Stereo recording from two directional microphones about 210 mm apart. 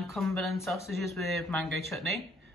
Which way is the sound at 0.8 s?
10° left (ahead or behind).